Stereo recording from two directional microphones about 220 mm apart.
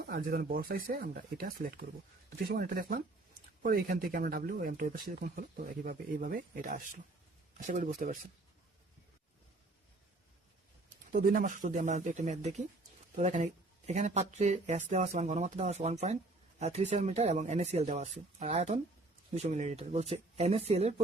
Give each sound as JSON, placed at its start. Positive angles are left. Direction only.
{"t": 0.0, "sound": "speech", "side_deg": -45}
{"t": 10.8, "sound": "speech", "side_deg": -35}